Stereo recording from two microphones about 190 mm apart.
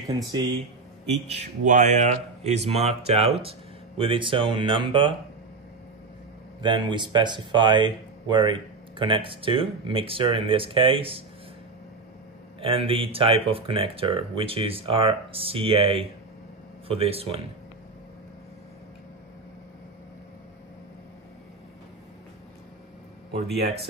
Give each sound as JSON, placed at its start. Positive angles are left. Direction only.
{"t": 0.1, "sound": "speech", "side_deg": -20}
{"t": 1.1, "sound": "speech", "side_deg": -35}
{"t": 6.6, "sound": "speech", "side_deg": -25}
{"t": 12.5, "sound": "speech", "side_deg": -30}